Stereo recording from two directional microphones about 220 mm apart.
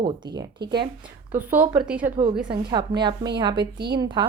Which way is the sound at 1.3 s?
10° right (ahead or behind).